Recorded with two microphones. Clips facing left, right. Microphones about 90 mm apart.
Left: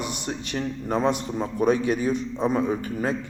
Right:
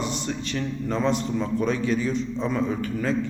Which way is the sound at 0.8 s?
50° left (ahead or behind).